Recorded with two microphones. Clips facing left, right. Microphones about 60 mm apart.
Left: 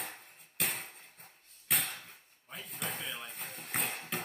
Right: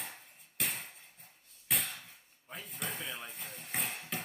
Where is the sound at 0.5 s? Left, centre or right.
Centre.